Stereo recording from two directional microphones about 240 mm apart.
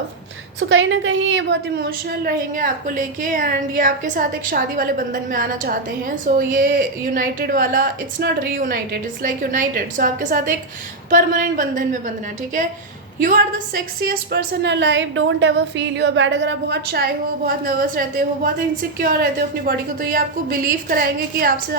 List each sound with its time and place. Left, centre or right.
0.7 s a woman's voice: right
13.2 s a woman's voice: right